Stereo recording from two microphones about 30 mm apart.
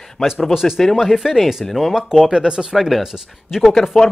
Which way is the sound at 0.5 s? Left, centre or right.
Centre.